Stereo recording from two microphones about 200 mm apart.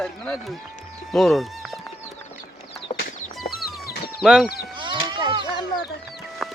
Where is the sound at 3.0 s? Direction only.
45° left (ahead or behind).